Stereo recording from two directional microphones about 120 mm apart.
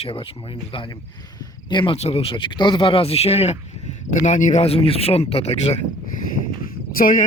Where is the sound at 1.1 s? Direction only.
30° left (ahead or behind).